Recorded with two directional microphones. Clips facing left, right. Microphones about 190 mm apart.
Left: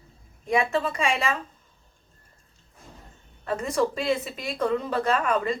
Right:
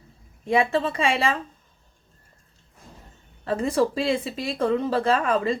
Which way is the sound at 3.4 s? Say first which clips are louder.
Right 3 dB; 30° right (ahead or behind).